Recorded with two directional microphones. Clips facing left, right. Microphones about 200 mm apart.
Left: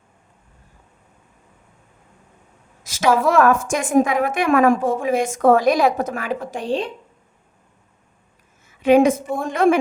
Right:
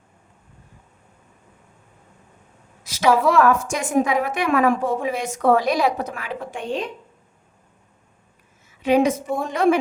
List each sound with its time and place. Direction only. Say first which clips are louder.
2.9 s a sound: right 2 dB; 45° left (ahead or behind)
3.2 s a woman's voice: left 1 dB; 50° left (ahead or behind); by 6.9 s 30° left (ahead or behind)
8.8 s a woman's voice: left 4 dB; 50° left (ahead or behind)